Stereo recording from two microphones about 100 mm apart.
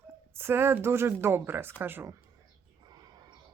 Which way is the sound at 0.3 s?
25° right (ahead or behind).